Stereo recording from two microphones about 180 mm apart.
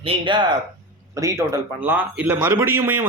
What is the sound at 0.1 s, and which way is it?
Speech, 25° right (ahead or behind).